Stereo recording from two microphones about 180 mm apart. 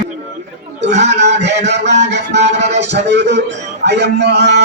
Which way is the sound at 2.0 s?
70° right (ahead or behind).